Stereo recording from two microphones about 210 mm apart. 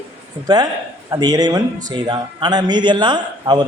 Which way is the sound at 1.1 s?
20° right (ahead or behind).